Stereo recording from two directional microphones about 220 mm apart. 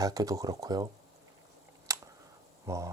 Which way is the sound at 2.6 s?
15° right (ahead or behind).